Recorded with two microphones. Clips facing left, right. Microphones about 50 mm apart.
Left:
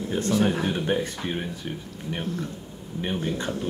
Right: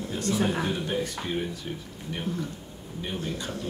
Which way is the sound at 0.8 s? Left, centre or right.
Left.